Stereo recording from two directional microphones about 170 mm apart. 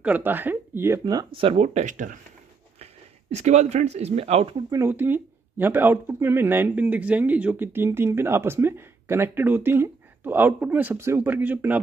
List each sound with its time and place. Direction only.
0.0 s speech: 10° right (ahead or behind); by 4.6 s 35° right (ahead or behind)
4.6 s speech: 15° right (ahead or behind)